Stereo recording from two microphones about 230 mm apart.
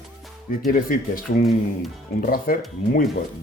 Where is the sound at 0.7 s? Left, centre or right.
Left.